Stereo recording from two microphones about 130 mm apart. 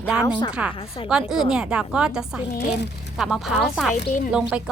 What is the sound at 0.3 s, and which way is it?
Speech, 35° left (ahead or behind).